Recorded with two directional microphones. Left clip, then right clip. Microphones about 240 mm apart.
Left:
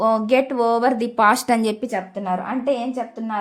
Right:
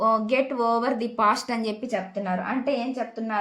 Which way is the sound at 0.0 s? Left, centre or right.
Left.